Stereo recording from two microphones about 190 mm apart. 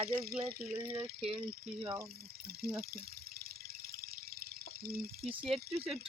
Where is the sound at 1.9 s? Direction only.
55° right (ahead or behind).